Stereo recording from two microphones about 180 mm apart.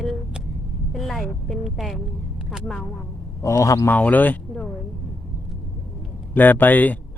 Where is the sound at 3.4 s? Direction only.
15° left (ahead or behind).